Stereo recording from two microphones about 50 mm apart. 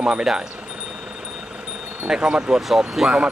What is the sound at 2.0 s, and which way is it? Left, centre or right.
Speech, centre.